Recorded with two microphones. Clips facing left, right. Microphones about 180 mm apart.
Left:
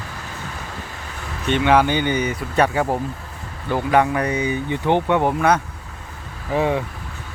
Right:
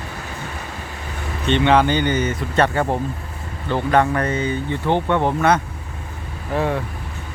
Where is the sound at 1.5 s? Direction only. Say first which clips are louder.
Right 1 dB; 10° left (ahead or behind).